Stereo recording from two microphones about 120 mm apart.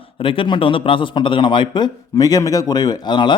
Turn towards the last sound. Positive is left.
turn(degrees=40)  # may be behind; listen again after turning